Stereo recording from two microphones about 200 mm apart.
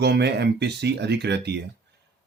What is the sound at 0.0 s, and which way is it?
Speech, 55° right (ahead or behind).